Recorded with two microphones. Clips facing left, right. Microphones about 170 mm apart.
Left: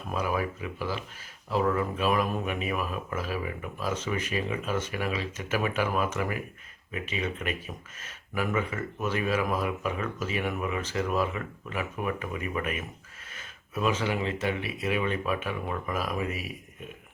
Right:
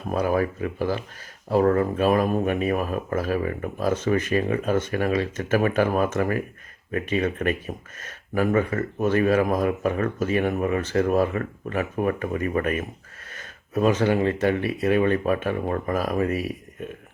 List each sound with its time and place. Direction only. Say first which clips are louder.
0.1 s speech: right 7 dB; 45° right (ahead or behind)